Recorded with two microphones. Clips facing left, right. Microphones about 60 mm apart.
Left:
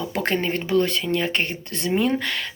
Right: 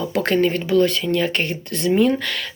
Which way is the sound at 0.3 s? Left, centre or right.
Left.